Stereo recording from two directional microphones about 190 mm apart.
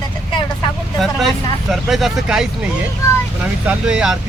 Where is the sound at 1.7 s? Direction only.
Centre (ahead or behind).